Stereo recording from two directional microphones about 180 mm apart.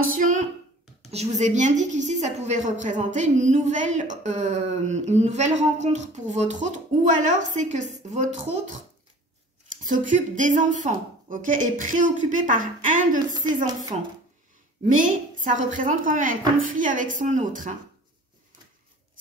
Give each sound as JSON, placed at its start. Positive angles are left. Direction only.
{"t": 0.0, "sound": "a sound", "side_deg": -50}
{"t": 1.1, "sound": "a woman's voice", "side_deg": -40}
{"t": 9.8, "sound": "a woman's voice", "side_deg": -45}
{"t": 14.9, "sound": "a woman's voice", "side_deg": -45}